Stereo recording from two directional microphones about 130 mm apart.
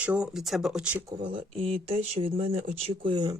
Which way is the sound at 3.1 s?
30° right (ahead or behind).